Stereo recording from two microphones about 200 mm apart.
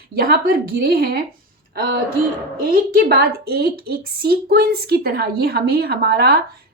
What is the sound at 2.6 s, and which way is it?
A woman's voice, 45° right (ahead or behind).